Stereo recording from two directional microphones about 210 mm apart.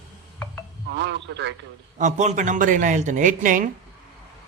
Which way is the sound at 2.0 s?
35° right (ahead or behind).